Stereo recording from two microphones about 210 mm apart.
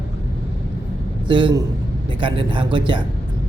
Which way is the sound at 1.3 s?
20° right (ahead or behind).